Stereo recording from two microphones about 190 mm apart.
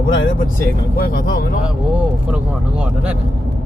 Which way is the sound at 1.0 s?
45° left (ahead or behind).